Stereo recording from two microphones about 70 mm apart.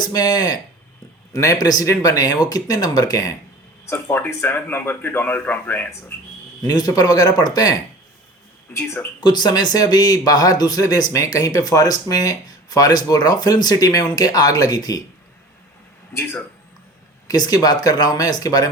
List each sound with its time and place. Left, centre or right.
0.0 s speech: left
1.3 s speech: left
3.8 s speech: left
6.6 s speech: left
8.7 s speech: left
9.2 s speech: left
17.2 s speech: left